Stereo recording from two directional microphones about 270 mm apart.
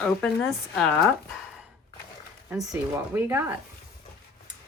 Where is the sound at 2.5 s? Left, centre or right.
Centre.